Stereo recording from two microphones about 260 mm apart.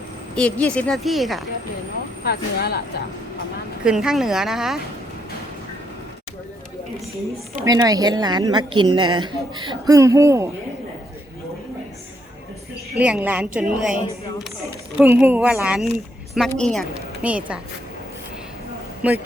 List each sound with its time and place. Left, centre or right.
0.3 s a woman's voice: centre
2.2 s speech: left
3.8 s a woman's voice: centre
7.5 s a woman's voice: centre
13.0 s a woman's voice: centre